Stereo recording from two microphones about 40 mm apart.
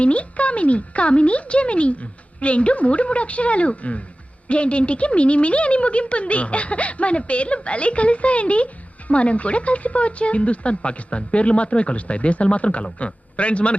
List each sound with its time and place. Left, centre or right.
0.0 s speech: left